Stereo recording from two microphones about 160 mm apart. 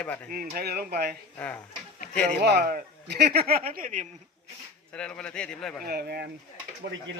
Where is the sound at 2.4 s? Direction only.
80° right; by 4.1 s 55° right (ahead or behind).